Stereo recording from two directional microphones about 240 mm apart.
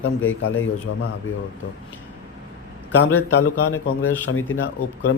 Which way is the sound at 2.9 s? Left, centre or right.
Left.